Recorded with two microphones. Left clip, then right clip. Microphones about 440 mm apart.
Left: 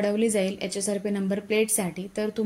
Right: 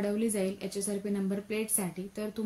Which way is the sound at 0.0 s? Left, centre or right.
Right.